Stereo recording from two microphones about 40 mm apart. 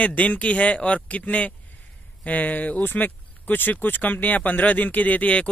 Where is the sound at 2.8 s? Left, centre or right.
Left.